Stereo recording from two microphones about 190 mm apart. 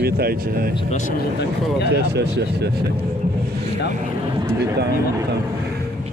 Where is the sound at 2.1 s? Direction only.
60° right (ahead or behind).